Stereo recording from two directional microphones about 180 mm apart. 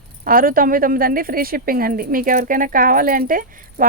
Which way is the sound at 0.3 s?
50° right (ahead or behind).